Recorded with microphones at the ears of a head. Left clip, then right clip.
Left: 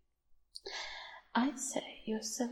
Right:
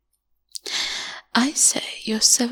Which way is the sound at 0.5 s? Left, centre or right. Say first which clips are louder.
Right 17 dB; right.